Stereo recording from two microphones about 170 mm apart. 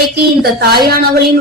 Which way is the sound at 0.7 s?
65° right (ahead or behind).